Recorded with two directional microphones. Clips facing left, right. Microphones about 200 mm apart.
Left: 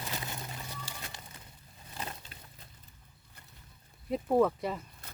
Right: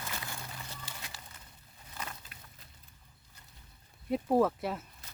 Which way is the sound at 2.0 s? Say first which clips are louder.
Left 2 dB; 30° left (ahead or behind).